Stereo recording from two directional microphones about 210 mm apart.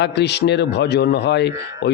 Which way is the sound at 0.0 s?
55° left (ahead or behind).